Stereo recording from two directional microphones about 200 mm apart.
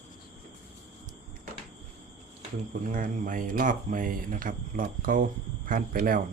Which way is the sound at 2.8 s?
40° right (ahead or behind).